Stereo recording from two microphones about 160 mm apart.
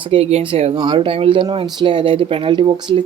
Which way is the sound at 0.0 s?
35° right (ahead or behind).